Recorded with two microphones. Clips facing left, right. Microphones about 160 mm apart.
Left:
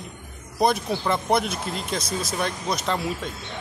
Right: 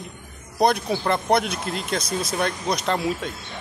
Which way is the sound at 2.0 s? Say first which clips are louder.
Right 2 dB; 25° left (ahead or behind).